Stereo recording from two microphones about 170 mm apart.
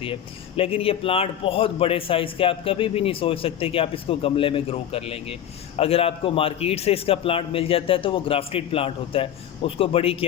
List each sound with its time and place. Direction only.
0.0 s a man's voice: 35° left (ahead or behind)